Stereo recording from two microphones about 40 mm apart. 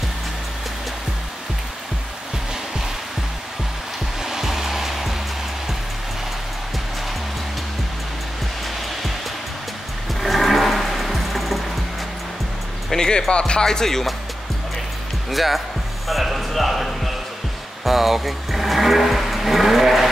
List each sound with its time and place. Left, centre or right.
4.2 s music: centre
10.2 s music: centre
12.9 s speech: centre
15.2 s speech: centre